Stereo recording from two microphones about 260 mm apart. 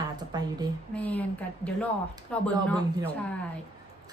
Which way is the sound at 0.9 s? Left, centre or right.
Centre.